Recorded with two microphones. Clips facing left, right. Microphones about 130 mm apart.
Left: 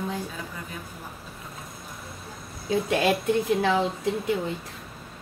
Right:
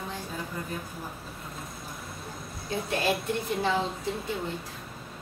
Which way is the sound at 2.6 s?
90° left.